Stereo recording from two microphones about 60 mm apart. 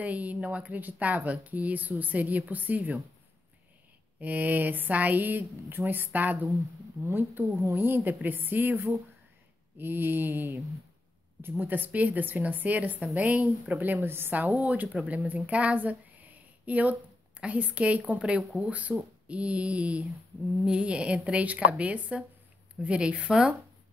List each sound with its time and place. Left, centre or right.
0.0 s speech: right
4.2 s speech: right
14.6 s speech: right
18.4 s speech: centre
18.7 s speech: right